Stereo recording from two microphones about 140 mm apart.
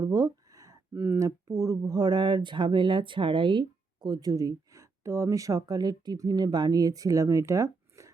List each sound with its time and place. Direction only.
0.0 s speech: 25° right (ahead or behind)